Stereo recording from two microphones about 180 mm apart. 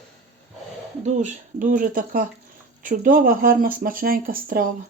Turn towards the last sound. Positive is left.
turn(degrees=-50)  # may be behind; listen again after turning